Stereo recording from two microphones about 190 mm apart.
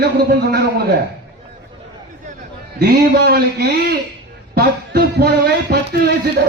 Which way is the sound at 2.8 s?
60° right (ahead or behind).